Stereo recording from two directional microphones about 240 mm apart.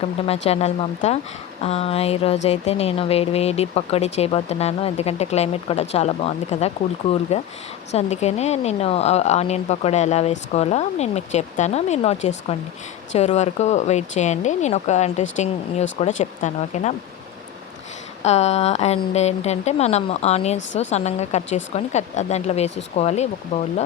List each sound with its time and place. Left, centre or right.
0.4 s speech: left
18.2 s speech: left